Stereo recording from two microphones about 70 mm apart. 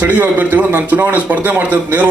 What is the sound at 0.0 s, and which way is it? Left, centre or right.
A man's voice, right.